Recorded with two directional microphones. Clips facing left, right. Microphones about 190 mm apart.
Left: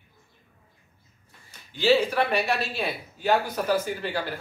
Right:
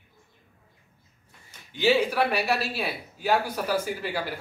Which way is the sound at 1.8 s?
10° right (ahead or behind).